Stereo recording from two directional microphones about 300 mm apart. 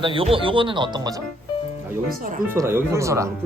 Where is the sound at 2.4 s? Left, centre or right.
Centre.